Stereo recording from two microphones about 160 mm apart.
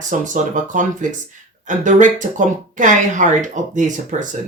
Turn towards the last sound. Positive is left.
turn(degrees=-50)  # may be behind; listen again after turning